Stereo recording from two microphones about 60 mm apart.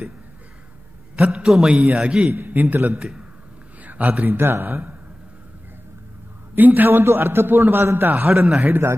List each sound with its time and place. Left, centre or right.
1.1 s a man's voice: centre
3.0 s a man's voice: centre
3.8 s a sound: right
4.2 s a man's voice: right
6.5 s a man's voice: right